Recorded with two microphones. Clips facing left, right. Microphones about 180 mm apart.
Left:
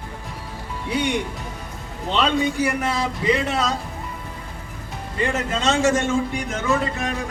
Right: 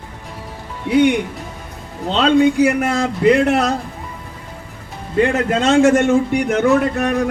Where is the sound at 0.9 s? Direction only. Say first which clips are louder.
Right 10 dB; 60° right (ahead or behind).